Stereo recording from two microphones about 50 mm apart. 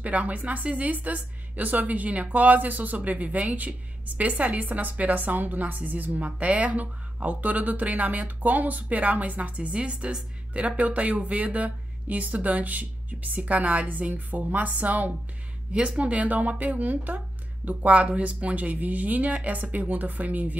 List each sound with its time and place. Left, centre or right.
0.0 s a woman's voice: right